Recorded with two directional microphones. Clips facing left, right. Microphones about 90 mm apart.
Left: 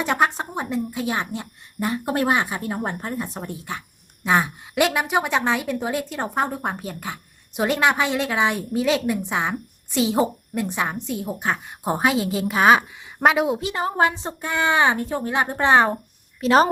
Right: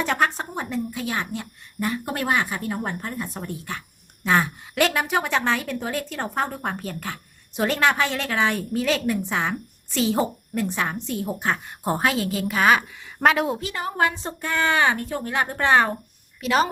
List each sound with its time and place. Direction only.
0.0 s a woman's voice: 15° left (ahead or behind)
13.2 s a woman's voice: 10° left (ahead or behind)
13.6 s speech: 20° left (ahead or behind)
16.4 s a woman's voice: 35° left (ahead or behind)